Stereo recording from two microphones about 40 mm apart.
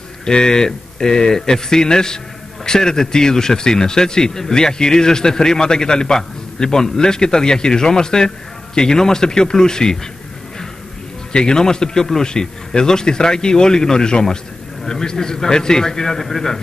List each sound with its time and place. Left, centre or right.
0.2 s a man's voice: centre
11.3 s a man's voice: centre